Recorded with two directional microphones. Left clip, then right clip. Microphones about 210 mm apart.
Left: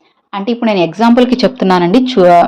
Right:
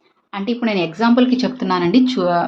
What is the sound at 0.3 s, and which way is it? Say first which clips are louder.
A woman's voice: left 7 dB; 25° left (ahead or behind).